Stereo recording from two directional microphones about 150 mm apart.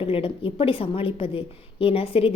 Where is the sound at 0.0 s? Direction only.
35° left (ahead or behind).